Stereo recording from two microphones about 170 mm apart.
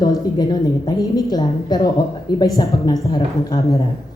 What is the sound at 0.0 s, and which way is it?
Speech, 25° left (ahead or behind).